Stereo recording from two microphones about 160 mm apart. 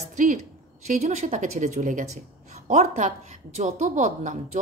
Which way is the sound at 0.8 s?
45° right (ahead or behind).